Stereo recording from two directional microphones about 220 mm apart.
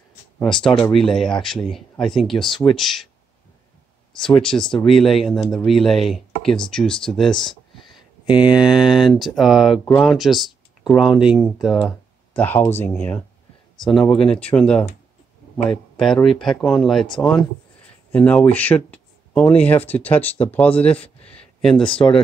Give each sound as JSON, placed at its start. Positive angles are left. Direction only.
{"t": 0.7, "sound": "speech", "side_deg": 5}
{"t": 4.2, "sound": "speech", "side_deg": 5}
{"t": 12.4, "sound": "speech", "side_deg": 10}
{"t": 20.9, "sound": "speech", "side_deg": 25}
{"t": 21.3, "sound": "a sound", "side_deg": 5}